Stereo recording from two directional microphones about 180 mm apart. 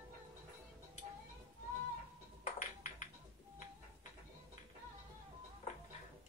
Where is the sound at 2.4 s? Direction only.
45° left (ahead or behind).